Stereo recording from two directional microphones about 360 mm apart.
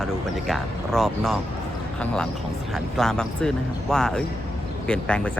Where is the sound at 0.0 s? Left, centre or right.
Centre.